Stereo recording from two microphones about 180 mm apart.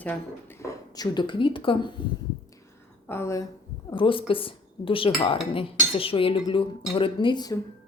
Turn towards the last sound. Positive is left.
turn(degrees=25)  # may be behind; listen again after turning